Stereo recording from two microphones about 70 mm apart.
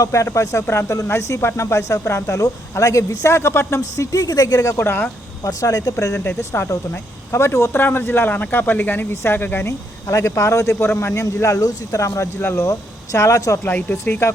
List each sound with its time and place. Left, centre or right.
0.0 s speech: left
3.8 s speech: left
4.8 s speech: left
5.5 s speech: left
6.2 s speech: left
9.6 s speech: left
12.4 s speech: left
13.1 s speech: left
13.9 s speech: left